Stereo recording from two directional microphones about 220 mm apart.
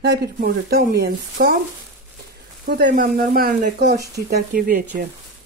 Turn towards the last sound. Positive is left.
turn(degrees=-40)  # may be behind; listen again after turning